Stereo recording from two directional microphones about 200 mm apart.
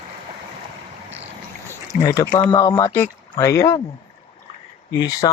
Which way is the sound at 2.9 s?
10° left (ahead or behind).